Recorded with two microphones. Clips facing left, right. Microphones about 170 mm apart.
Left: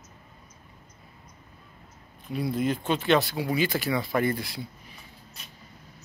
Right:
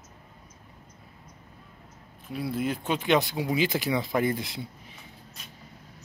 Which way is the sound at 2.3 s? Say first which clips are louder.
Left 2 dB; 5° right (ahead or behind).